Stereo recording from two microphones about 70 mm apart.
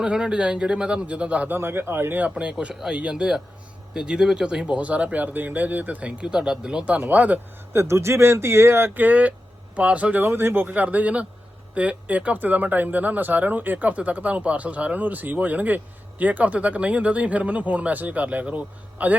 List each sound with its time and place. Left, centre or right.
0.0 s speech: centre; by 2.2 s right
2.2 s speech: centre
7.7 s speech: right
9.0 s speech: right